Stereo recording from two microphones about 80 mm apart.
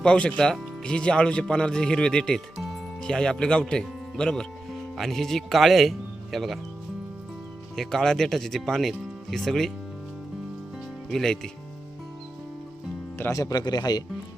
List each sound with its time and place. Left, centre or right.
0.0 s speech: centre
7.8 s speech: centre
11.1 s speech: centre
13.3 s speech: left